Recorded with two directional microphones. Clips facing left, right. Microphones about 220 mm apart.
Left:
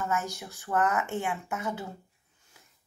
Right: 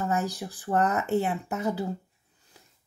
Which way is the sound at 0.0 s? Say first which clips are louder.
Right 4 dB; 35° right (ahead or behind).